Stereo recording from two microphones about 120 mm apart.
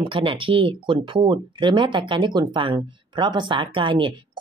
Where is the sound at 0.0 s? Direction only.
45° right (ahead or behind).